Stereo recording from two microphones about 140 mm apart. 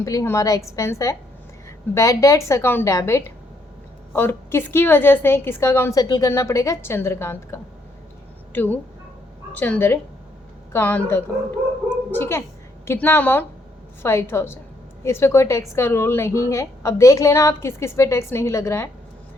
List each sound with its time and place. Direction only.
0.0 s a woman's voice: 25° left (ahead or behind)